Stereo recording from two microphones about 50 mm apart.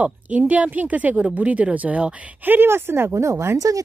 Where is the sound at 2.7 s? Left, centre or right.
Right.